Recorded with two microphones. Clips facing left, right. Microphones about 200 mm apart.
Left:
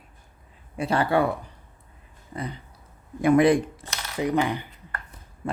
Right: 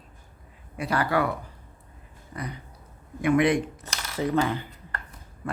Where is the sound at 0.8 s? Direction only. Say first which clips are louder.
Left 3 dB; 25° left (ahead or behind).